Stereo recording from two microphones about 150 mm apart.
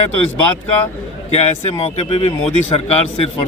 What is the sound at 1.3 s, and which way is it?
Speech, 40° left (ahead or behind).